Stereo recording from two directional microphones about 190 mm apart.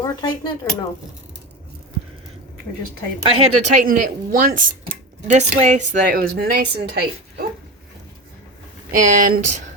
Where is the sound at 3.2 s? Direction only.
40° right (ahead or behind); by 7.4 s 55° right (ahead or behind).